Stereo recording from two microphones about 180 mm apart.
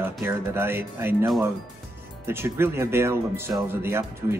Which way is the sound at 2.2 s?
15° right (ahead or behind).